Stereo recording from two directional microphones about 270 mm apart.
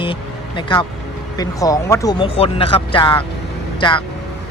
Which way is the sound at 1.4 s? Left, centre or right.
Centre.